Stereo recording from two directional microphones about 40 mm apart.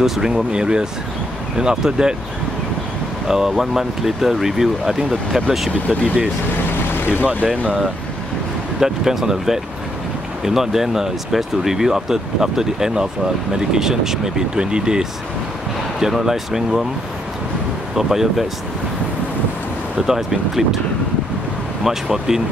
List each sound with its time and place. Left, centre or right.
0.0 s speech: centre
0.3 s speech: right
3.3 s speech: centre
6.9 s vehicle: left
8.7 s speech: centre
14.5 s speech: right
16.0 s speech: centre
17.9 s speech: centre
20.0 s speech: centre
21.8 s speech: centre